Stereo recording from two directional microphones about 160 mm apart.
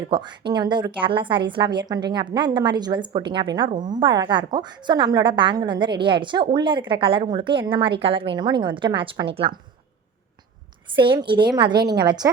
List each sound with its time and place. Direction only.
0.1 s a woman's voice: 30° right (ahead or behind)
10.9 s a woman's voice: 30° right (ahead or behind)